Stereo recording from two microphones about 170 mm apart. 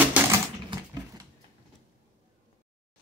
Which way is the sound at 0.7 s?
30° right (ahead or behind).